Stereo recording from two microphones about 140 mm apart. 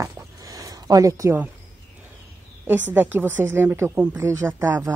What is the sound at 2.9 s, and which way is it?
Speech, 15° right (ahead or behind).